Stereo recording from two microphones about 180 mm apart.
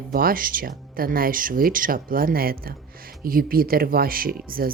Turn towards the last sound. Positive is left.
turn(degrees=-55)  # may be behind; listen again after turning